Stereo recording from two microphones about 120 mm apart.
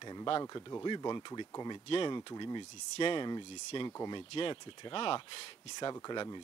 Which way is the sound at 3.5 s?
55° left (ahead or behind).